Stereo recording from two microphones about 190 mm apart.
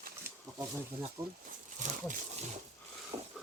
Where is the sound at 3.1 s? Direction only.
25° right (ahead or behind).